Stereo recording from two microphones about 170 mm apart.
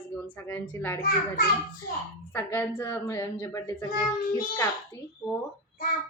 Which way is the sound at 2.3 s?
10° left (ahead or behind).